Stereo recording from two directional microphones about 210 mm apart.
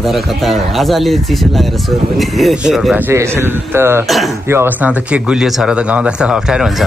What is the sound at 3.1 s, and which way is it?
Speech, 10° right (ahead or behind).